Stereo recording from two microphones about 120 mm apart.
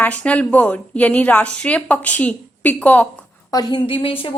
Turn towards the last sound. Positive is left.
turn(degrees=50)  # may be behind; listen again after turning